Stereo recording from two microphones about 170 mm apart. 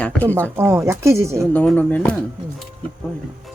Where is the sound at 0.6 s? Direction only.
15° right (ahead or behind).